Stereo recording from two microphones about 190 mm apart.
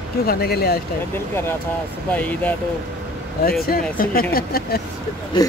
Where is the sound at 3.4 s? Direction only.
50° left (ahead or behind).